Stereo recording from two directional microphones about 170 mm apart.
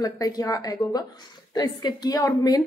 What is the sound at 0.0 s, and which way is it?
A woman's voice, 20° left (ahead or behind).